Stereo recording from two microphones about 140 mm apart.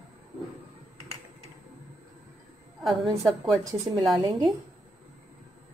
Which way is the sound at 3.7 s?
30° right (ahead or behind).